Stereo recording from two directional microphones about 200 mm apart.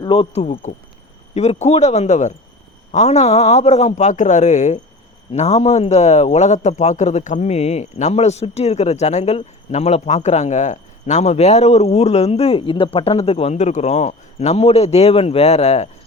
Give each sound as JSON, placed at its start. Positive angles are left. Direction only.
{"t": 0.0, "sound": "speech", "side_deg": 20}
{"t": 0.3, "sound": "a man's voice", "side_deg": 35}